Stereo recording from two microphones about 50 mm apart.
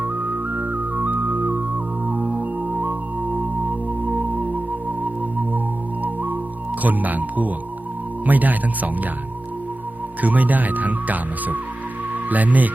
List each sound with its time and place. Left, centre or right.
0.0 s music: right
6.8 s speech: right
10.2 s speech: right